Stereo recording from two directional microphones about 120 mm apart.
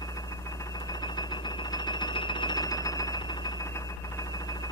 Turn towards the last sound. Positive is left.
turn(degrees=30)  # may be behind; listen again after turning